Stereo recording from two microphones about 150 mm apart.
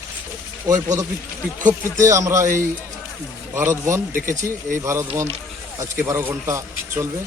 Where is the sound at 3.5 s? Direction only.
20° right (ahead or behind).